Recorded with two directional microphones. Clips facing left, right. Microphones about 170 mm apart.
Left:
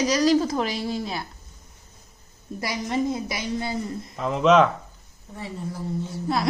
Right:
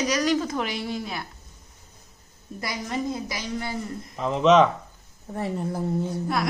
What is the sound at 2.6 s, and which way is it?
A woman's voice, 25° left (ahead or behind).